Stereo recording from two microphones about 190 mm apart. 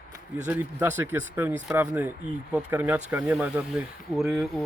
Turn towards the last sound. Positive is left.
turn(degrees=0)  # may be behind; listen again after turning